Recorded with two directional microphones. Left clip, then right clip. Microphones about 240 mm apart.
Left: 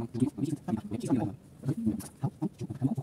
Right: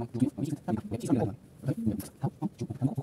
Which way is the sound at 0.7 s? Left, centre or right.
Right.